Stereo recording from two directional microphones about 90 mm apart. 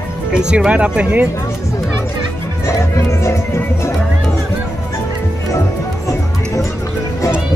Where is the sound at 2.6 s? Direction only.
30° left (ahead or behind).